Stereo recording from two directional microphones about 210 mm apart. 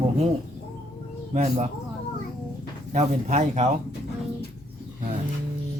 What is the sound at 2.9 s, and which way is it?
Speech, 35° right (ahead or behind).